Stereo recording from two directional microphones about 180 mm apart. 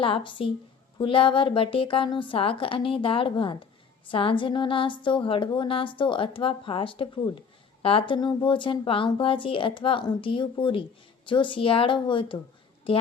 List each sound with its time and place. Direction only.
0.0 s a woman's voice: 30° left (ahead or behind)